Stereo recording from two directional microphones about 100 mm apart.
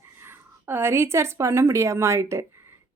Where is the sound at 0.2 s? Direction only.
25° right (ahead or behind).